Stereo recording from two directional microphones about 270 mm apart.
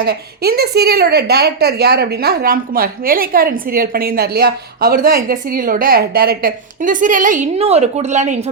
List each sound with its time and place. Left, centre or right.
0.0 s a woman's voice: right